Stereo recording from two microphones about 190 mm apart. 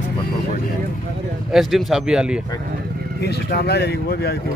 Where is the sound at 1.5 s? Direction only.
Centre (ahead or behind).